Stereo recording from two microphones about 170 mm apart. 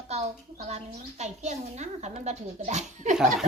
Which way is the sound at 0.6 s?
40° right (ahead or behind).